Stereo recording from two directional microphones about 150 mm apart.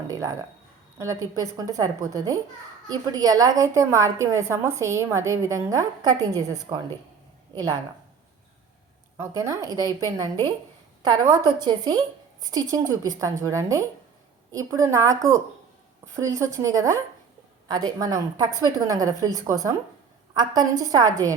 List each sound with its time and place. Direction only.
0.9 s a woman's voice: 20° right (ahead or behind)
9.1 s a woman's voice: 20° right (ahead or behind)
9.6 s a woman's voice: 25° left (ahead or behind)
11.0 s a woman's voice: 30° right (ahead or behind)